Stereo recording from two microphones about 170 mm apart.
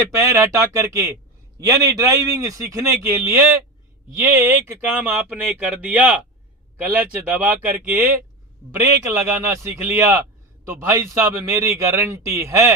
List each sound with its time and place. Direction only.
0.1 s a man's voice: 20° right (ahead or behind)